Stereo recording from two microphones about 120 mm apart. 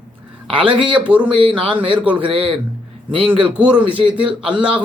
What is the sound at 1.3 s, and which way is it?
Speech, 45° right (ahead or behind).